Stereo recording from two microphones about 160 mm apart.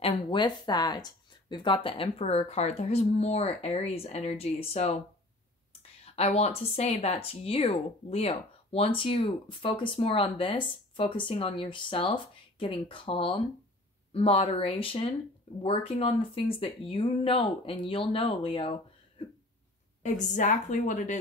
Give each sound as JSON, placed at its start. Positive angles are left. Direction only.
{"t": 0.0, "sound": "speech", "side_deg": 35}
{"t": 20.0, "sound": "a woman's voice", "side_deg": 50}